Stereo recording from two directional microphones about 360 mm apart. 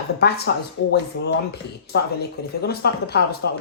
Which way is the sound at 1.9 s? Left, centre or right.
Left.